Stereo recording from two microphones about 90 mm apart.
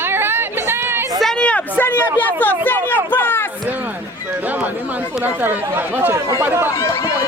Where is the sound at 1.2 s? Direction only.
10° left (ahead or behind).